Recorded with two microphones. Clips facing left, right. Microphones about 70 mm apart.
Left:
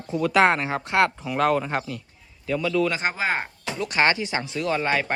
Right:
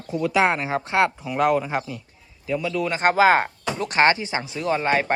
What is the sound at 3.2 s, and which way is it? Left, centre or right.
Speech, right.